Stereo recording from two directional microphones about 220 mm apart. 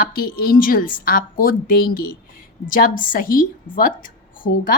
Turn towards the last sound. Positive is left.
turn(degrees=40)  # may be behind; listen again after turning